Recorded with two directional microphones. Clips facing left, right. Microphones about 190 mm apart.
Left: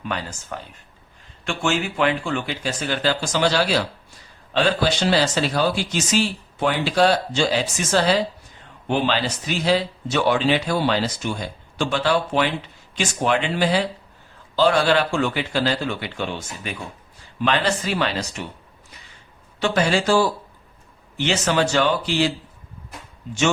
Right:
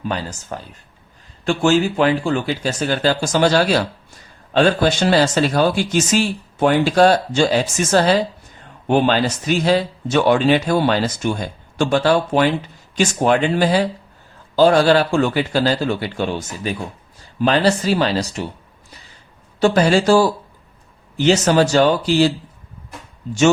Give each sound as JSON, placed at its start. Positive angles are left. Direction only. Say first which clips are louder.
{"t": 0.0, "sound": "speech", "louder": "right 4 dB", "side_deg": -35}
{"t": 19.6, "sound": "speech", "louder": "right 6 dB", "side_deg": -40}